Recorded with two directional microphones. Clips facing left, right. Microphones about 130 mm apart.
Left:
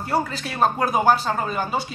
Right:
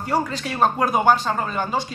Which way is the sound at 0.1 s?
5° left (ahead or behind).